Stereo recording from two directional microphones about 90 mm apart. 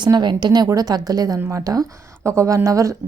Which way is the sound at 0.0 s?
55° right (ahead or behind).